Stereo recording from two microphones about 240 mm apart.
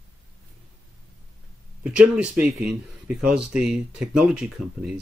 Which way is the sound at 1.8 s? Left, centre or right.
Centre.